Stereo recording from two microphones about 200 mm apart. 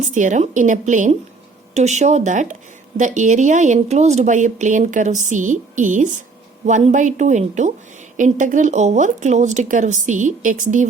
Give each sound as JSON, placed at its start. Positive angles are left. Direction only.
{"t": 0.0, "sound": "speech", "side_deg": -40}